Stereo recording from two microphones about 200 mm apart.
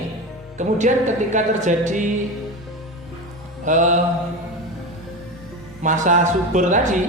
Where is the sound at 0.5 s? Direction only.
40° right (ahead or behind).